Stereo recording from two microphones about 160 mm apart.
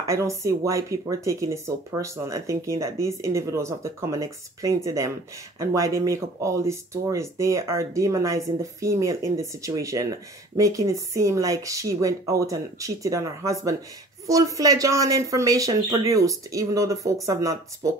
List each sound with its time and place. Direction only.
0.0 s speech: 20° right (ahead or behind)